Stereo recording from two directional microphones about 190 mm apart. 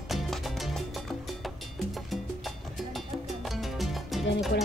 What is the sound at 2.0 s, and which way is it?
Music, centre (ahead or behind).